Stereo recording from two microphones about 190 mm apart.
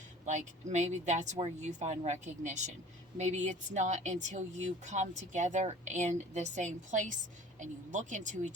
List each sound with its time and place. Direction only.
0.3 s speech: 40° right (ahead or behind)